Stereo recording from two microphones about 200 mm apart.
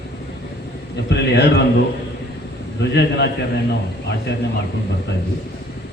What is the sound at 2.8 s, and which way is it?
A man's voice, 55° left (ahead or behind).